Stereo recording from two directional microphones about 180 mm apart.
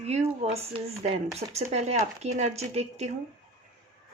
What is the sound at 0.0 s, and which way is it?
Speech, 40° right (ahead or behind).